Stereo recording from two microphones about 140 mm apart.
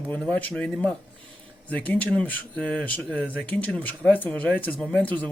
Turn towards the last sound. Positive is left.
turn(degrees=10)  # may be behind; listen again after turning